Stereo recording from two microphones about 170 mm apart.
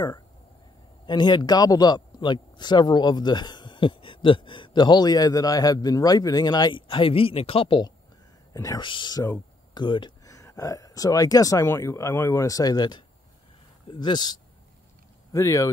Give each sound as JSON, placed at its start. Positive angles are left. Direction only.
{"t": 1.0, "sound": "a man's voice", "side_deg": 25}